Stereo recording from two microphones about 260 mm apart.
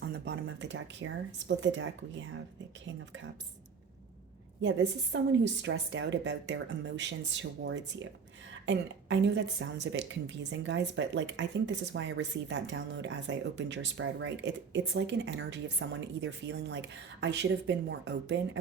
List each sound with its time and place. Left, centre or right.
0.0 s speech: right
4.6 s a woman's voice: right